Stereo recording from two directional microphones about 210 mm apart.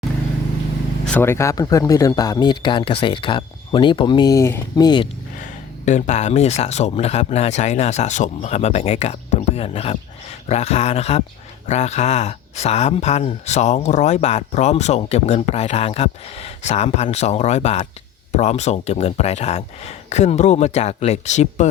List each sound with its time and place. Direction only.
1.0 s speech: 10° left (ahead or behind)
5.8 s speech: 35° left (ahead or behind)